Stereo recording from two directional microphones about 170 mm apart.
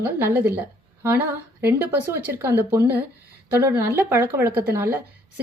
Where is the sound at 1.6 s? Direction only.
15° right (ahead or behind).